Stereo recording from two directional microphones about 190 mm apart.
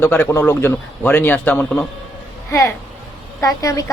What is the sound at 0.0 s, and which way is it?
A woman's voice, 10° left (ahead or behind).